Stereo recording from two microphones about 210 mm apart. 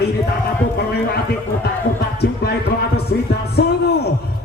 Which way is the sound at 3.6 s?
50° left (ahead or behind).